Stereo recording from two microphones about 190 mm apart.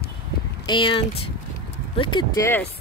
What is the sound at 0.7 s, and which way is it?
Speech, 25° left (ahead or behind).